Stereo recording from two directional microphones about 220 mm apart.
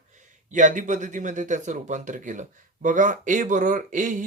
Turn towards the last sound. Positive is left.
turn(degrees=-35)  # may be behind; listen again after turning